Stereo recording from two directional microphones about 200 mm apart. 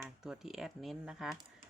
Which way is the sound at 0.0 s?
Centre (ahead or behind).